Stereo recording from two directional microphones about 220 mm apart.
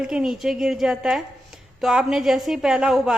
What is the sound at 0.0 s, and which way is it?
Speech, 5° right (ahead or behind).